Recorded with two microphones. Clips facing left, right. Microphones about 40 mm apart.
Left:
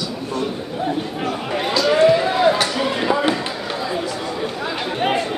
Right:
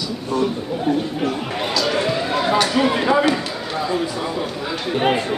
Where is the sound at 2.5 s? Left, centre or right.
Centre.